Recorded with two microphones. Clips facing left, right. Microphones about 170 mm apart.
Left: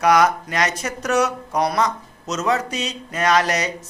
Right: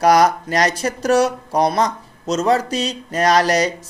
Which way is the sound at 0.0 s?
35° right (ahead or behind).